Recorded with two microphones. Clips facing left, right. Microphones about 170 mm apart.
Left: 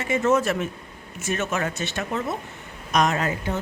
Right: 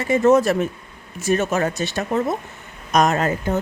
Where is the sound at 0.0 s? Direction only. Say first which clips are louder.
Right 6 dB; 35° right (ahead or behind).